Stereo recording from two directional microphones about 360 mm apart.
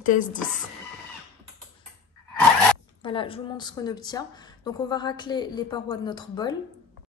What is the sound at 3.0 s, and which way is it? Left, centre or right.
Speech, centre.